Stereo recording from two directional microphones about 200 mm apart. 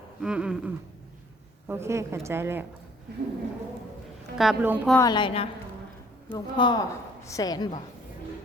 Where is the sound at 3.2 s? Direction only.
55° right (ahead or behind).